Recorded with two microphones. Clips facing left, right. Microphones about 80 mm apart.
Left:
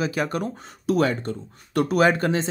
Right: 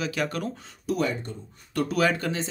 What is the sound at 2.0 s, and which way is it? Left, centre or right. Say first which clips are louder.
Speech: left 6 dB; left.